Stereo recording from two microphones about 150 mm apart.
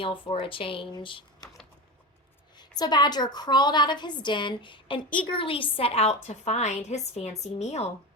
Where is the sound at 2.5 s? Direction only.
30° left (ahead or behind); by 7.8 s 45° left (ahead or behind).